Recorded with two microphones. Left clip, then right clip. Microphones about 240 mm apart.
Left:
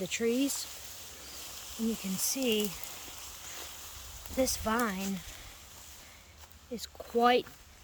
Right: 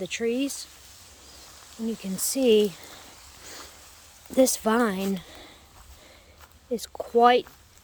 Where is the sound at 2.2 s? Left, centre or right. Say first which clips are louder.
Right 11 dB; right.